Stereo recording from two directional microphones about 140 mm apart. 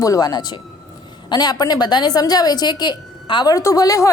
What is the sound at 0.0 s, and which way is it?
A woman's voice, 25° left (ahead or behind).